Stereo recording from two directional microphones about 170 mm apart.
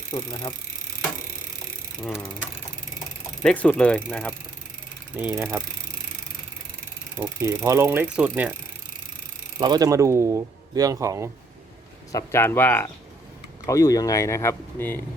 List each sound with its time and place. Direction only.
0.1 s speech: 25° left (ahead or behind)
3.4 s speech: 5° left (ahead or behind)
5.1 s speech: 15° right (ahead or behind)
7.2 s speech: 15° right (ahead or behind)
9.6 s speech: 25° right (ahead or behind)
12.1 s speech: 15° left (ahead or behind)